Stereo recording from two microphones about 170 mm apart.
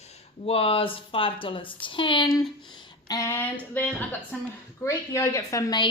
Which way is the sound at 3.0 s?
20° left (ahead or behind).